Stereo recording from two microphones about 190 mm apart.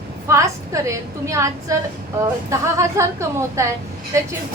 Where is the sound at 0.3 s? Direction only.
15° right (ahead or behind).